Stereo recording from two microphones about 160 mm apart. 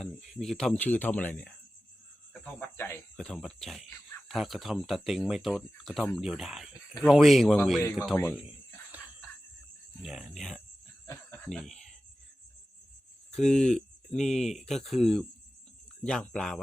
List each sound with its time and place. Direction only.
0.0 s speech: centre (ahead or behind)
8.1 s speech: 10° left (ahead or behind)
10.0 s speech: centre (ahead or behind)
11.4 s a sound: centre (ahead or behind)
13.3 s speech: 5° left (ahead or behind)